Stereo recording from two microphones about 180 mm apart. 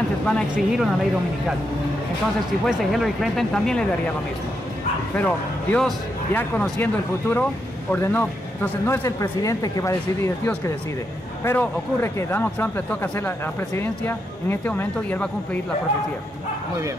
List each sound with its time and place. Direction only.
0.3 s speech: centre (ahead or behind)
2.6 s speech: centre (ahead or behind)
5.1 s a man's voice: 10° left (ahead or behind)